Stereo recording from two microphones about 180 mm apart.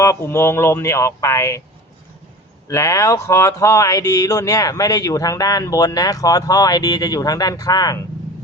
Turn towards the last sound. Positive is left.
turn(degrees=20)  # may be behind; listen again after turning